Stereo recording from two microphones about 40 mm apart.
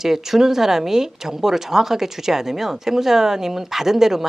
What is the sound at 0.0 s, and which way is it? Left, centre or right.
Speech, centre.